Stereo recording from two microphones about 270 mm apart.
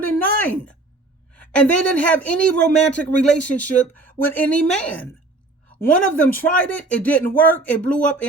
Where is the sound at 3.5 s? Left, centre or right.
Left.